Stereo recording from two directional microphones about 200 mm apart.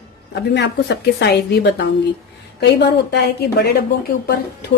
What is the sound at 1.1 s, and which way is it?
Speech, 55° left (ahead or behind).